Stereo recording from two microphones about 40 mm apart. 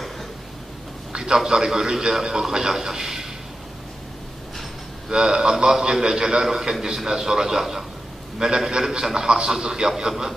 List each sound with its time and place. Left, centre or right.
1.1 s a sound: centre
1.5 s a man's voice: centre
5.0 s a man's voice: centre